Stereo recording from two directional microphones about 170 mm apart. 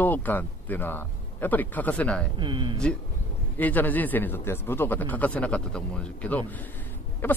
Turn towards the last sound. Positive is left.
turn(degrees=10)  # may be behind; listen again after turning